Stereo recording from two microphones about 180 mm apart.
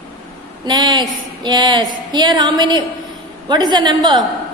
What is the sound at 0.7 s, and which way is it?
A woman's voice, 25° right (ahead or behind).